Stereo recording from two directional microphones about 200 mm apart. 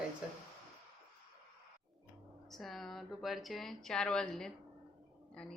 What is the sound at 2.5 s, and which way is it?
Speech, centre (ahead or behind).